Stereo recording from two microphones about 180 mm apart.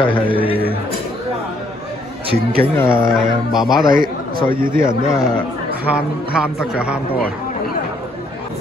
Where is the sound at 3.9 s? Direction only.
55° right (ahead or behind).